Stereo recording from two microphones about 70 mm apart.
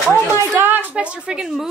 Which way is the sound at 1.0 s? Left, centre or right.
Centre.